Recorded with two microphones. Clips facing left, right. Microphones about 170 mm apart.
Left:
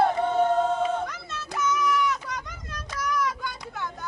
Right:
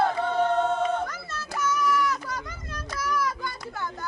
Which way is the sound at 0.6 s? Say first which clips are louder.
Even; centre (ahead or behind).